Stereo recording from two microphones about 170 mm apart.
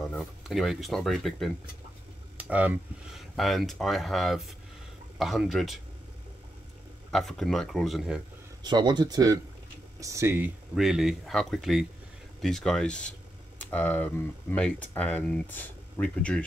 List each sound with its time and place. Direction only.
0.0 s speech: centre (ahead or behind)
2.3 s speech: 10° right (ahead or behind)
3.3 s speech: centre (ahead or behind)
7.1 s speech: centre (ahead or behind)
8.6 s speech: 25° right (ahead or behind)
10.7 s speech: centre (ahead or behind)